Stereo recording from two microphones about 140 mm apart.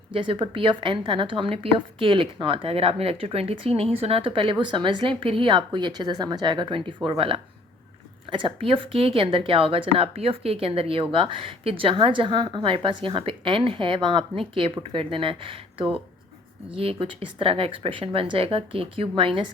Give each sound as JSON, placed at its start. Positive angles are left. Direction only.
{"t": 0.1, "sound": "a woman's voice", "side_deg": -35}